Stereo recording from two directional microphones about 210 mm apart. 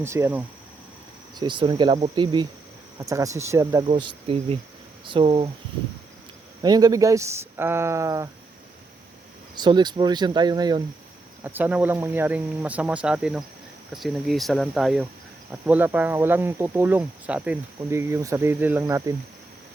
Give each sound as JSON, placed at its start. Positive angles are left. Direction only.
{"t": 0.0, "sound": "speech", "side_deg": -10}
{"t": 1.4, "sound": "speech", "side_deg": -20}
{"t": 6.6, "sound": "speech", "side_deg": -20}
{"t": 9.6, "sound": "speech", "side_deg": -20}
{"t": 11.4, "sound": "speech", "side_deg": -10}